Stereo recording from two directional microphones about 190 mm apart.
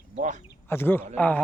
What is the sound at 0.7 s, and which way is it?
Speech, 10° left (ahead or behind).